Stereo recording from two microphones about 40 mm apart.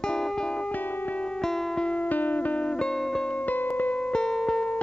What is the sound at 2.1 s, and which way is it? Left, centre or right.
Music, left.